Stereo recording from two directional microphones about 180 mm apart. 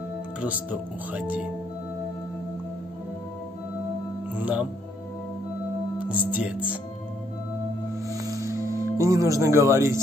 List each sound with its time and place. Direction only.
0.4 s speech: 10° right (ahead or behind)
4.4 s speech: 10° right (ahead or behind)
6.0 s speech: 10° right (ahead or behind)
8.1 s music: 20° right (ahead or behind)